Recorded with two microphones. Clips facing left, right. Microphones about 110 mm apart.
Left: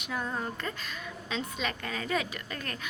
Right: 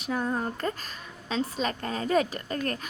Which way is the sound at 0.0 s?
35° right (ahead or behind).